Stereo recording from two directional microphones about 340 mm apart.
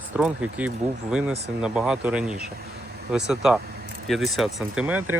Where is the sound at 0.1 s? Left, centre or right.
Centre.